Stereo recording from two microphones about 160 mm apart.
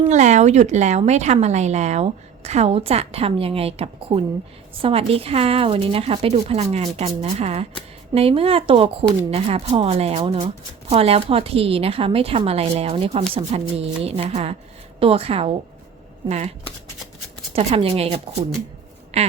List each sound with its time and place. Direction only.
0.1 s a woman's voice: 50° right (ahead or behind)